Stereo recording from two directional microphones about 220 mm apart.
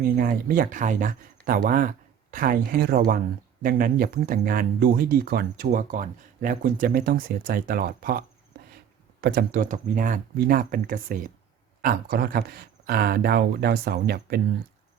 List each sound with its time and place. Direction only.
0.2 s speech: 40° right (ahead or behind)
9.2 s speech: 40° right (ahead or behind)